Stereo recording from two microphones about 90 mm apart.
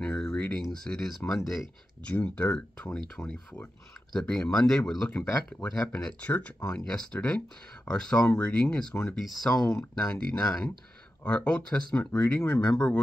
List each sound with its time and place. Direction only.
0.0 s a sound: 10° left (ahead or behind)
0.7 s speech: 5° left (ahead or behind)
2.0 s speech: 15° left (ahead or behind)